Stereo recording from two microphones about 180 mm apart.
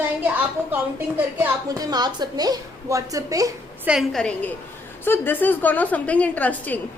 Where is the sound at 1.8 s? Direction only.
20° right (ahead or behind).